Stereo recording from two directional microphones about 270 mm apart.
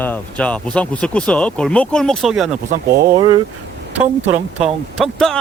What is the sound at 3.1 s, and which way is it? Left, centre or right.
Speech, centre.